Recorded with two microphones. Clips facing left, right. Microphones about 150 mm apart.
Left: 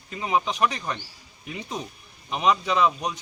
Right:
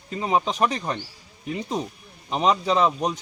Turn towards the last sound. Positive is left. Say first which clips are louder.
# right 2 dB
turn(degrees=-30)  # may be behind; listen again after turning